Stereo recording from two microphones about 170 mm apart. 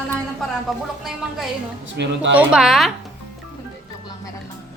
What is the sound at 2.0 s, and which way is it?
Speech, 90° right.